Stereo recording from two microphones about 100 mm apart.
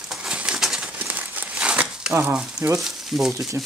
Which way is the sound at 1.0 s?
15° right (ahead or behind).